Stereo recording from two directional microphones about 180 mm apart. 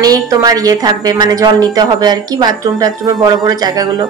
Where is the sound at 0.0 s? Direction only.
20° right (ahead or behind).